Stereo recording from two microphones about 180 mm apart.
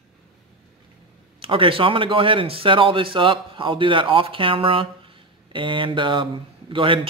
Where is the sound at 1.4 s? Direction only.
30° right (ahead or behind).